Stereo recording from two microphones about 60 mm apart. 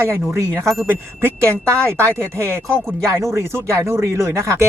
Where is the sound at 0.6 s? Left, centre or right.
Centre.